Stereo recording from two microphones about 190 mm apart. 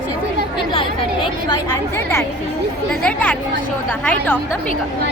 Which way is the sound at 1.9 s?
15° left (ahead or behind).